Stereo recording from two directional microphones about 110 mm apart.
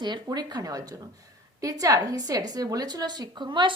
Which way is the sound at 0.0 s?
40° right (ahead or behind).